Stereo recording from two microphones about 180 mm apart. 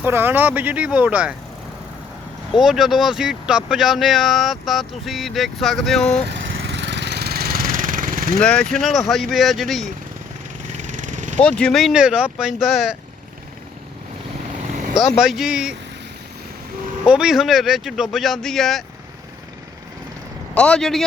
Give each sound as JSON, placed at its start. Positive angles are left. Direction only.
{"t": 0.0, "sound": "speech", "side_deg": -10}
{"t": 2.6, "sound": "speech", "side_deg": 0}
{"t": 6.3, "sound": "lawn mower", "side_deg": -80}
{"t": 8.4, "sound": "speech", "side_deg": 5}
{"t": 10.6, "sound": "vehicle", "side_deg": -45}
{"t": 11.3, "sound": "speech", "side_deg": 5}
{"t": 14.9, "sound": "speech", "side_deg": 0}
{"t": 17.1, "sound": "speech", "side_deg": -5}
{"t": 20.5, "sound": "speech", "side_deg": 5}